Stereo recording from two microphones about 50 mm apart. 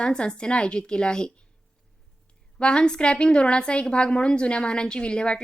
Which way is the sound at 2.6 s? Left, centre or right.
Centre.